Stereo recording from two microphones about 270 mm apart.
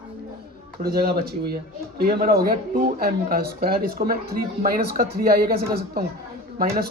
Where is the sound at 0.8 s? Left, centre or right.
Right.